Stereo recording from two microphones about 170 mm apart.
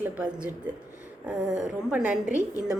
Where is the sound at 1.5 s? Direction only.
5° right (ahead or behind).